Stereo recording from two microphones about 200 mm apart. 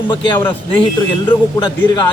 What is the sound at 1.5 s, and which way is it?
Speech, 25° left (ahead or behind).